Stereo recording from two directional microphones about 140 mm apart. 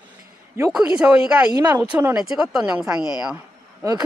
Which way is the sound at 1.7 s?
15° right (ahead or behind).